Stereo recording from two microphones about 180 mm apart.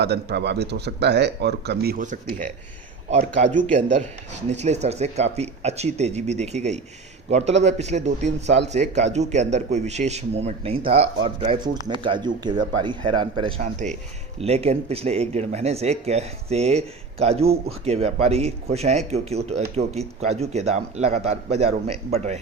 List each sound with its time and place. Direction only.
0.0 s speech: 65° right (ahead or behind)
3.4 s speech: 40° right (ahead or behind)
13.6 s speech: 40° right (ahead or behind)